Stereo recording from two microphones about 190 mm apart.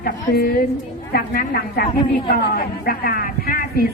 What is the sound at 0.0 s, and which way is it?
A woman's voice, 50° left (ahead or behind).